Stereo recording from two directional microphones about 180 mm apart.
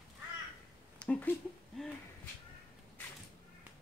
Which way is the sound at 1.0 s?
10° left (ahead or behind).